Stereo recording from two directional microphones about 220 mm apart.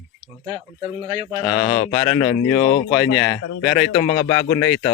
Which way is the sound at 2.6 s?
45° left (ahead or behind).